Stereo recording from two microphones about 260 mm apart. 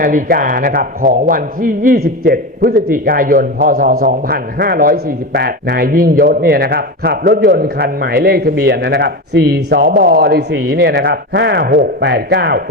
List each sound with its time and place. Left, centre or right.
0.0 s a man's voice: right